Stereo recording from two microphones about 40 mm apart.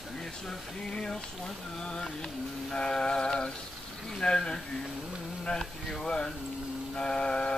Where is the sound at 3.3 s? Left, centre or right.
Centre.